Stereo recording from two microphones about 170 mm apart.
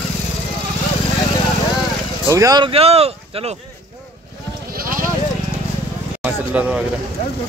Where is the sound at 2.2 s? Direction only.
20° right (ahead or behind).